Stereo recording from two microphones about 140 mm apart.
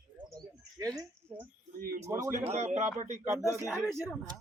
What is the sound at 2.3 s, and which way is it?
Speech, 55° right (ahead or behind).